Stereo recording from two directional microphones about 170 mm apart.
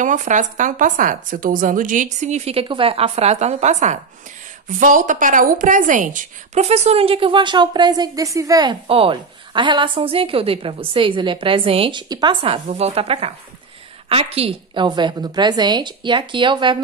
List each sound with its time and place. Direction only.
0.0 s a woman's voice: 50° right (ahead or behind); by 8.7 s 20° right (ahead or behind)
8.8 s a woman's voice: 35° right (ahead or behind)